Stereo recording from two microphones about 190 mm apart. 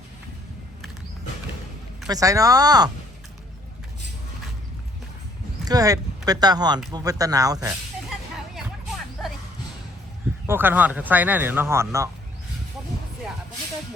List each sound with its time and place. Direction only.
2.0 s speech: 20° right (ahead or behind)
5.6 s speech: 20° right (ahead or behind)
8.5 s hubbub: centre (ahead or behind)
10.4 s speech: 10° right (ahead or behind)